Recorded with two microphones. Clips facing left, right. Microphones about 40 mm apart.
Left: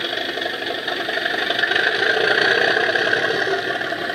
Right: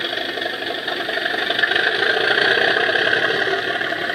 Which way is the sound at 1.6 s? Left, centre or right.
Centre.